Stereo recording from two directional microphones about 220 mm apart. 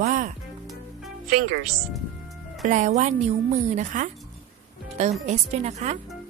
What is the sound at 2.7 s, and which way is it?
A woman's voice, 35° right (ahead or behind).